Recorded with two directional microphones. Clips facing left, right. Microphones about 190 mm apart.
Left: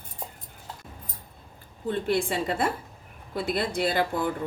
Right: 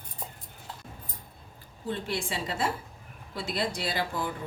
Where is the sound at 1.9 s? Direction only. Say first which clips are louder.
Left 7 dB; 55° left (ahead or behind).